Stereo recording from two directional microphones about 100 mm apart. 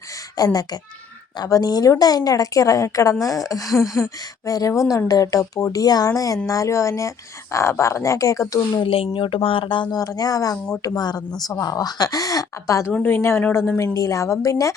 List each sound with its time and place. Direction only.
0.3 s a woman's voice: 40° left (ahead or behind)
8.9 s speech: 65° left (ahead or behind)
9.9 s a woman's voice: 40° left (ahead or behind)
12.9 s a woman's voice: 20° left (ahead or behind)